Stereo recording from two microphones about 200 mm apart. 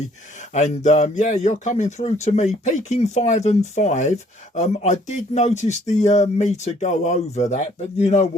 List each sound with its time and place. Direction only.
0.5 s speech: 35° left (ahead or behind)